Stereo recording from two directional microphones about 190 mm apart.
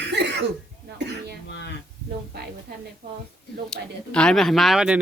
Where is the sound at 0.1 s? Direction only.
65° right (ahead or behind).